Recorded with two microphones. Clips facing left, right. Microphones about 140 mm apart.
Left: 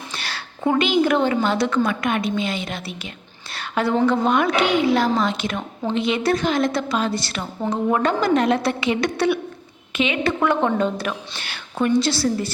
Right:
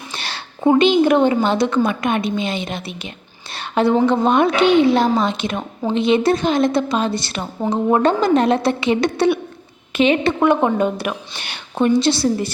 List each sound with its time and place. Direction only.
0.1 s a woman's voice: 25° right (ahead or behind)
10.4 s a woman's voice: 15° right (ahead or behind)